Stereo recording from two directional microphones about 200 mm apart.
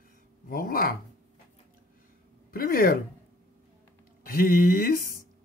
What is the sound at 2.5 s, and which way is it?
Speech, 45° left (ahead or behind).